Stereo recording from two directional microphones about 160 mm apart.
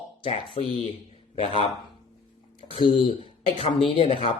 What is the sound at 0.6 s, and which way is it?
Speech, 45° left (ahead or behind).